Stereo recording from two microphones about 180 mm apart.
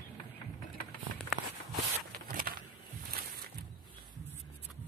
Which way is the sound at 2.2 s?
55° right (ahead or behind).